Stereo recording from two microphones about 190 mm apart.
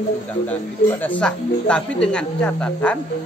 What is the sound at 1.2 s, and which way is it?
Speech, 5° left (ahead or behind).